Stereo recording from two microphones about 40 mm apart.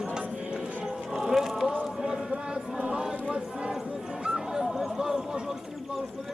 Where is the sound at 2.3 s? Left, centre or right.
Right.